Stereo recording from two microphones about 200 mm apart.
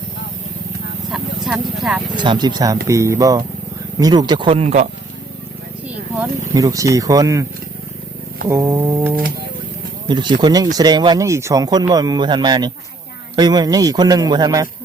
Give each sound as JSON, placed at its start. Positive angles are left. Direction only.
{"t": 1.1, "sound": "speech", "side_deg": 0}
{"t": 2.1, "sound": "speech", "side_deg": -20}
{"t": 2.8, "sound": "a sound", "side_deg": -15}
{"t": 3.9, "sound": "speech", "side_deg": -20}
{"t": 6.1, "sound": "speech", "side_deg": -15}
{"t": 8.4, "sound": "a sound", "side_deg": -15}
{"t": 10.1, "sound": "speech", "side_deg": -20}